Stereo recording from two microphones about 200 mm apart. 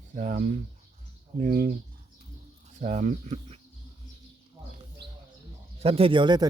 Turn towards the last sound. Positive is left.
turn(degrees=-20)  # may be behind; listen again after turning